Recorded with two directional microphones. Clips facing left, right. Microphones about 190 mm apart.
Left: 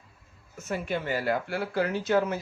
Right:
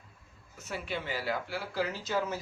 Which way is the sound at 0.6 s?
45° left (ahead or behind).